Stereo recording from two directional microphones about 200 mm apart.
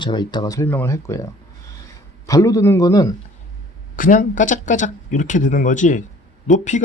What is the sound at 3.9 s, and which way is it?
Speech, 40° left (ahead or behind).